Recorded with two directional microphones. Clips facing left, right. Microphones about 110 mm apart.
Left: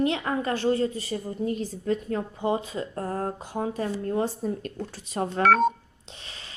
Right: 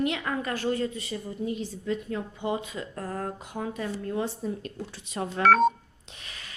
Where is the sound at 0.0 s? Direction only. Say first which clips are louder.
Left 3 dB; 30° left (ahead or behind).